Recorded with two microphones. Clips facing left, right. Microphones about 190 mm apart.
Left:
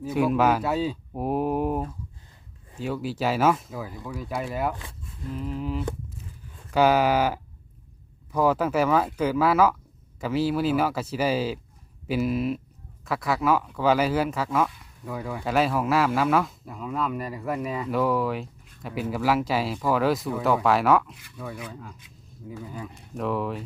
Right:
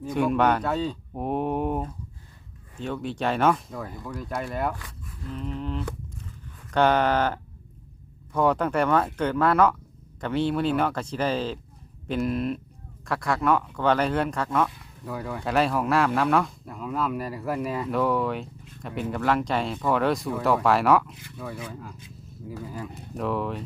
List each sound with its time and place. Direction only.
0.0 s speech: 5° left (ahead or behind)
4.7 s speech: 25° left (ahead or behind)
5.3 s speech: 5° left (ahead or behind)